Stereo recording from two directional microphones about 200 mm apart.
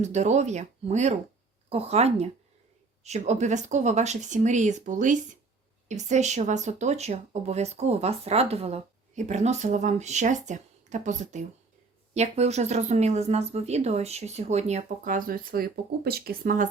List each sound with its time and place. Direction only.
0.0 s speech: 35° right (ahead or behind)